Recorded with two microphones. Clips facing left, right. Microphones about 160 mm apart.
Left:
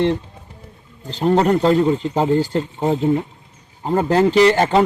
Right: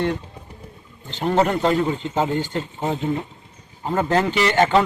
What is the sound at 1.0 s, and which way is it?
A man's voice, 35° left (ahead or behind).